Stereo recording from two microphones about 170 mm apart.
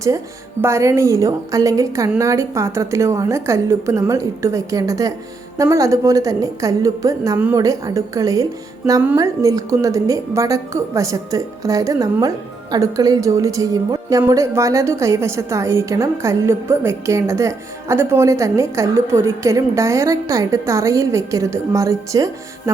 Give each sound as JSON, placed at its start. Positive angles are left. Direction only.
{"t": 0.6, "sound": "a woman's voice", "side_deg": -15}
{"t": 7.6, "sound": "a woman's voice", "side_deg": -20}